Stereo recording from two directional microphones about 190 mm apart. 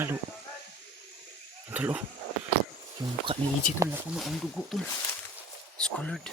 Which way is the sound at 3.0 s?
20° right (ahead or behind).